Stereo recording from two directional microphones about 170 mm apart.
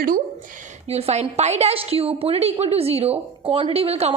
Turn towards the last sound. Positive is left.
turn(degrees=-35)  # may be behind; listen again after turning